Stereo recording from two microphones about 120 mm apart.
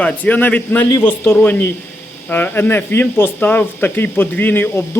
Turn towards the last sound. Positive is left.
turn(degrees=15)  # may be behind; listen again after turning